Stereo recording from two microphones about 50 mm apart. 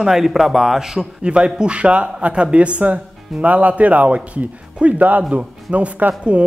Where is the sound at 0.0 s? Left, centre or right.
Centre.